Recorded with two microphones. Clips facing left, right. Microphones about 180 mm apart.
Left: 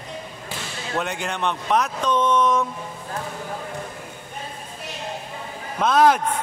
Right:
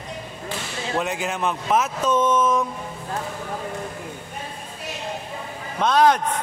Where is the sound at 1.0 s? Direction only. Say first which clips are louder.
Even; centre (ahead or behind).